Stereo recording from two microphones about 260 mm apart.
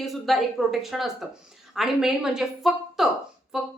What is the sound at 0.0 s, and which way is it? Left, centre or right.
A woman's voice, centre.